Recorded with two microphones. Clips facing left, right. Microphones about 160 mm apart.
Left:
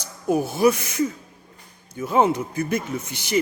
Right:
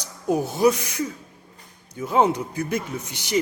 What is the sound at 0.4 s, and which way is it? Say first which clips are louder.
Speech: right 1 dB; 15° right (ahead or behind).